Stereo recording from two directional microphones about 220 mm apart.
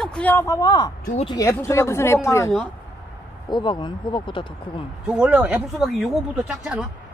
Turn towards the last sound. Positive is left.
turn(degrees=-5)  # may be behind; listen again after turning